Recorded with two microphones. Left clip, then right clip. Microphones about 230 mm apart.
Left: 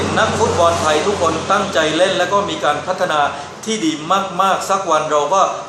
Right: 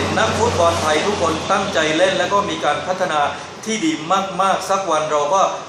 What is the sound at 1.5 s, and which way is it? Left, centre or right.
A man's voice, centre.